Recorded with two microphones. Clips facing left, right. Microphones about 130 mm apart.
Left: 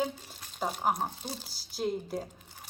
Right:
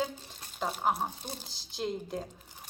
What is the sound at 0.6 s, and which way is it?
Speech, 5° left (ahead or behind).